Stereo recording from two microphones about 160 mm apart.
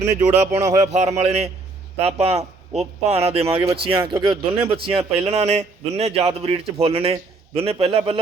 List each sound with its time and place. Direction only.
0.2 s a man's voice: 45° right (ahead or behind)
0.6 s speech: 20° right (ahead or behind)
0.9 s a man's voice: 45° right (ahead or behind)